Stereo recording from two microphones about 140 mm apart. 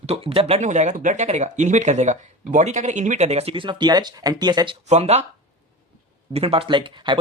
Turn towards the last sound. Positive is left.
turn(degrees=-35)  # may be behind; listen again after turning